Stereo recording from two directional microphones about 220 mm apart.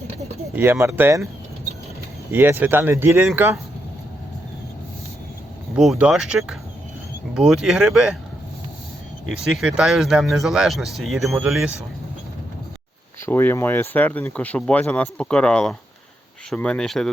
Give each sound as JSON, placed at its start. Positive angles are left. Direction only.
{"t": 0.5, "sound": "speech", "side_deg": -10}
{"t": 2.3, "sound": "speech", "side_deg": -10}
{"t": 5.7, "sound": "speech", "side_deg": 0}
{"t": 9.3, "sound": "speech", "side_deg": -5}
{"t": 13.2, "sound": "speech", "side_deg": 10}